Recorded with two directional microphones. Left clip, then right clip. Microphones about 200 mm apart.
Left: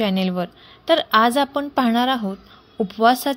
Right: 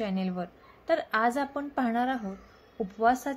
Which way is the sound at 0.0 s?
40° left (ahead or behind).